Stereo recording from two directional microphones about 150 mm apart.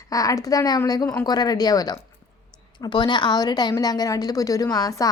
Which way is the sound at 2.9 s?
30° left (ahead or behind).